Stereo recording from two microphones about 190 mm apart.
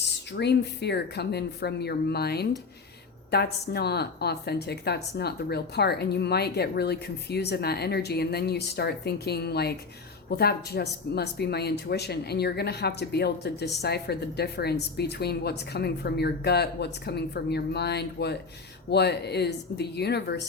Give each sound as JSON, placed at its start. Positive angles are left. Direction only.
{"t": 0.3, "sound": "speech", "side_deg": 60}